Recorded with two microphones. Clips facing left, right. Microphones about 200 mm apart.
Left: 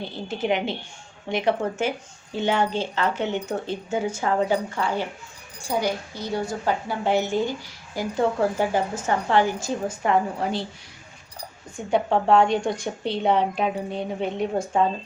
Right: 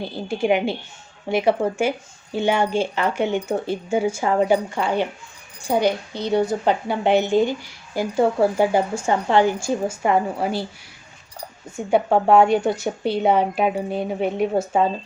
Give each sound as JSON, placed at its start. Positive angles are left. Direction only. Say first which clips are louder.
{"t": 0.0, "sound": "speech", "louder": "right 4 dB", "side_deg": -10}
{"t": 5.6, "sound": "speech", "louder": "right 5 dB", "side_deg": -65}
{"t": 6.5, "sound": "speech", "louder": "right 5 dB", "side_deg": -20}
{"t": 9.8, "sound": "speech", "louder": "right 4 dB", "side_deg": -25}
{"t": 10.1, "sound": "speech", "louder": "right 2 dB", "side_deg": -10}
{"t": 11.9, "sound": "speech", "louder": "right 3 dB", "side_deg": -10}